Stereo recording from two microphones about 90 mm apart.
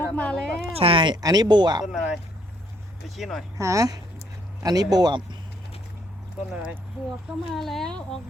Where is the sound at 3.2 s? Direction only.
5° left (ahead or behind).